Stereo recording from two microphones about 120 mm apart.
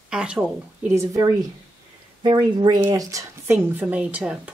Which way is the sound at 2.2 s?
40° right (ahead or behind).